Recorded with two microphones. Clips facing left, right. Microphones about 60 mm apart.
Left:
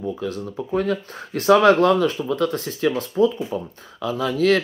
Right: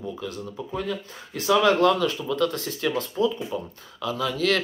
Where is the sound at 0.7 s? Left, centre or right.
Left.